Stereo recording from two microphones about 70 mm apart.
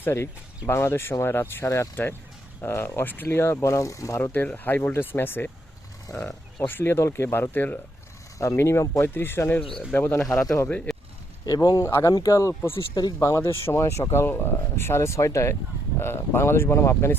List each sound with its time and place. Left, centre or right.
0.0 s speech: left
1.6 s speech: left
2.6 s speech: left
4.2 s speech: left
6.1 s speech: left
6.6 s speech: left
8.4 s speech: left
10.4 s speech: left
10.9 s a sound: centre
11.4 s speech: left
12.3 s speech: left
12.9 s speech: left
13.2 s speech: left